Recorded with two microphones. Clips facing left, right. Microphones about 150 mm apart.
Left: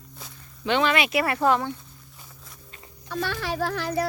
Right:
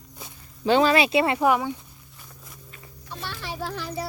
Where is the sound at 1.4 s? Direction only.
10° right (ahead or behind).